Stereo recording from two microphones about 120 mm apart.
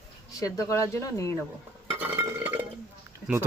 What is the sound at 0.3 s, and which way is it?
Speech, 30° left (ahead or behind).